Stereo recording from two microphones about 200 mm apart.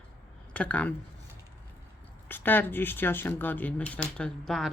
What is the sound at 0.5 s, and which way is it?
Speech, 5° left (ahead or behind).